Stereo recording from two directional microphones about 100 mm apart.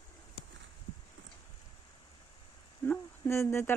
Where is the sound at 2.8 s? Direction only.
25° left (ahead or behind).